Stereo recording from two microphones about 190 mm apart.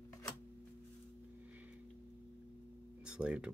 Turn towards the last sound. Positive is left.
turn(degrees=-5)  # may be behind; listen again after turning